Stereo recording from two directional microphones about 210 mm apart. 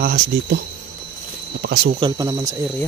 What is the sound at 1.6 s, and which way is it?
Speech, 50° right (ahead or behind).